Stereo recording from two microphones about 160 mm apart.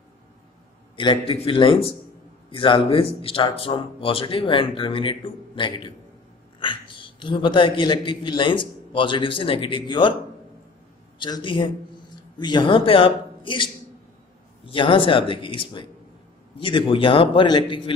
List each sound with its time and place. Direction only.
0.9 s a man's voice: 30° left (ahead or behind)
11.1 s a man's voice: 30° left (ahead or behind)